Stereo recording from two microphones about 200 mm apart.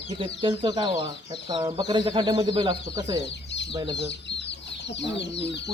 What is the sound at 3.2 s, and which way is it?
Speech, 60° left (ahead or behind).